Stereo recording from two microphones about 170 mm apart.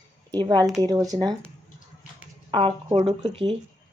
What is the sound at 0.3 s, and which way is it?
Speech, 25° right (ahead or behind).